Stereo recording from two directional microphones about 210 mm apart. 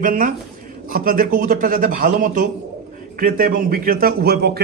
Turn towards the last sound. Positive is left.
turn(degrees=-50)  # may be behind; listen again after turning